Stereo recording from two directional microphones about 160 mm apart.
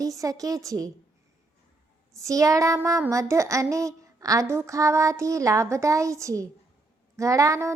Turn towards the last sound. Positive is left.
turn(degrees=-20)  # may be behind; listen again after turning